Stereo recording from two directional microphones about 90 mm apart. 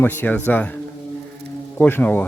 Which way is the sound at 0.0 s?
20° left (ahead or behind).